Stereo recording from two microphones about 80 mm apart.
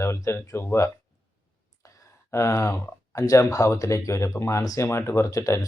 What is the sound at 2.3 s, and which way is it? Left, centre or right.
Speech, left.